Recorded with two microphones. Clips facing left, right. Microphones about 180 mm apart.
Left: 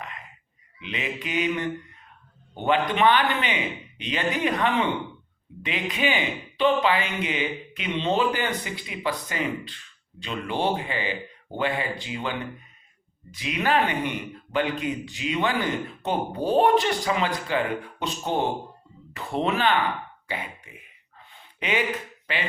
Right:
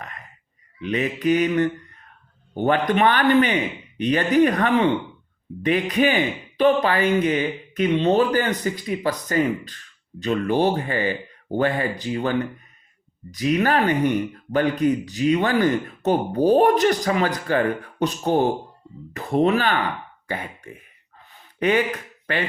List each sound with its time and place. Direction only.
0.8 s speech: 45° right (ahead or behind)